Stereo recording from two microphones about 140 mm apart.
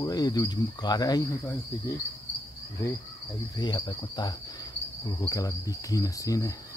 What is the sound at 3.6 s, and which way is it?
Cricket, 30° left (ahead or behind).